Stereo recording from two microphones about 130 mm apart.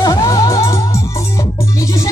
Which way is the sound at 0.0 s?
25° left (ahead or behind).